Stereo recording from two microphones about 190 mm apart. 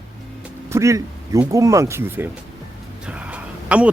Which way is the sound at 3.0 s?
5° right (ahead or behind).